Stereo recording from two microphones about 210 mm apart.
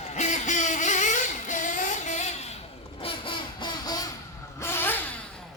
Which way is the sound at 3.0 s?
20° left (ahead or behind).